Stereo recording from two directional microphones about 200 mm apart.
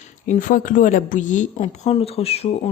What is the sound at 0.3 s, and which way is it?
Speech, 40° left (ahead or behind).